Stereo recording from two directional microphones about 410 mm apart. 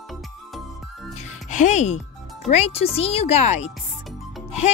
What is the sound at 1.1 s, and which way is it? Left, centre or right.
Music, centre.